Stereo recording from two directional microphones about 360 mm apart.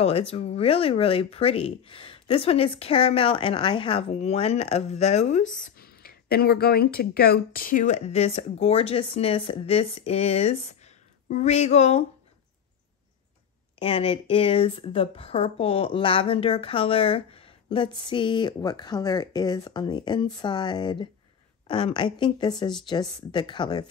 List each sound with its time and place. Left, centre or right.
0.0 s speech: centre
13.8 s speech: centre